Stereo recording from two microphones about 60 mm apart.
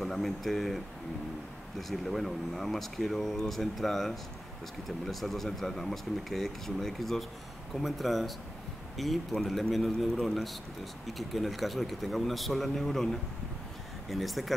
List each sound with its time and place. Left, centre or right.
0.0 s speech: centre
1.8 s a man's voice: centre